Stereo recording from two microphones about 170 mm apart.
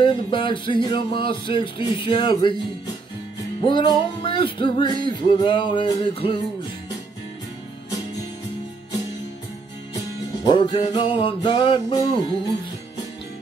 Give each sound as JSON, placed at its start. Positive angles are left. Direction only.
{"t": 0.0, "sound": "music", "side_deg": 30}
{"t": 3.6, "sound": "music", "side_deg": 30}
{"t": 10.4, "sound": "music", "side_deg": 30}